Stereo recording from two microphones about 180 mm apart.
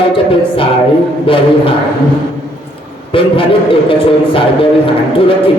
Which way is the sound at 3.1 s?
30° left (ahead or behind).